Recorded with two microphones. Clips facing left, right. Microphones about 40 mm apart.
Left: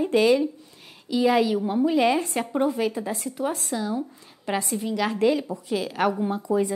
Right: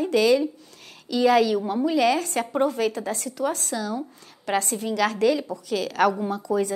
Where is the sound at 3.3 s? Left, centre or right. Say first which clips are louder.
Right 2 dB; left.